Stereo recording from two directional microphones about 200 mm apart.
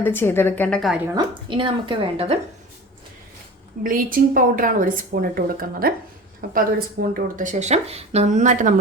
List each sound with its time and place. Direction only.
0.0 s a woman's voice: 10° left (ahead or behind)
1.0 s a woman's voice: 20° right (ahead or behind)
3.8 s a woman's voice: 45° right (ahead or behind)